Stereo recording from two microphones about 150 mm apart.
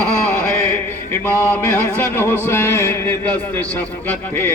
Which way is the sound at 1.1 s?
15° left (ahead or behind).